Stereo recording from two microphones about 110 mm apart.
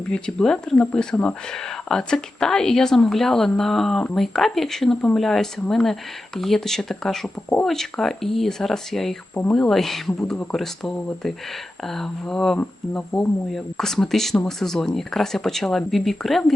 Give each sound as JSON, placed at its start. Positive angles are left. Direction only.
{"t": 0.1, "sound": "speech", "side_deg": 5}